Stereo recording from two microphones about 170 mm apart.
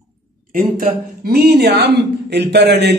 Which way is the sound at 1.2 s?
65° right (ahead or behind).